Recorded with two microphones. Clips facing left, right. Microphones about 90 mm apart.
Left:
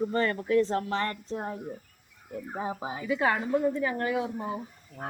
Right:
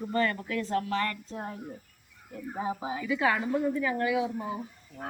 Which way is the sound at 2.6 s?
30° left (ahead or behind).